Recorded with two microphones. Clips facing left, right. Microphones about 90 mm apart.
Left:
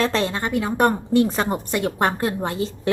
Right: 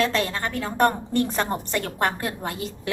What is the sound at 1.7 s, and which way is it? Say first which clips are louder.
A woman's voice: left 4 dB; 20° left (ahead or behind).